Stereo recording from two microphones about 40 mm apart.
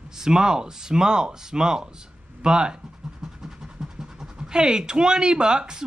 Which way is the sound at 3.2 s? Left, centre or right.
Centre.